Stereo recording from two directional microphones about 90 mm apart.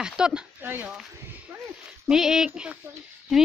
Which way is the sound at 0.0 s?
10° right (ahead or behind).